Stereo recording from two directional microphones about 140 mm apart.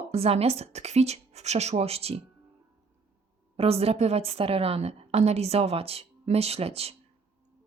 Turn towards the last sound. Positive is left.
turn(degrees=-45)  # may be behind; listen again after turning